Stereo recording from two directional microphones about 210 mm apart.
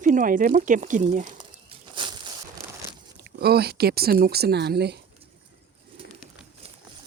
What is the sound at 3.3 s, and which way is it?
Speech, 50° right (ahead or behind).